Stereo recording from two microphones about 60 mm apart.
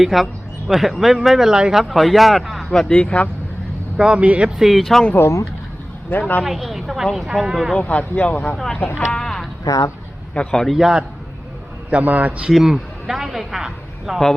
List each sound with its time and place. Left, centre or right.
0.0 s speech: centre
2.9 s speech: left
3.9 s a man's voice: centre
4.4 s speech: centre
6.1 s speech: left
6.4 s speech: centre
7.9 s speech: left
8.5 s speech: centre
9.6 s speech: left
10.5 s speech: centre
10.8 s a man's voice: centre
11.9 s a man's voice: right
12.5 s a man's voice: centre